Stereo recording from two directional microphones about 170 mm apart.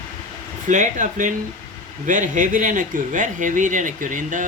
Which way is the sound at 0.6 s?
45° right (ahead or behind).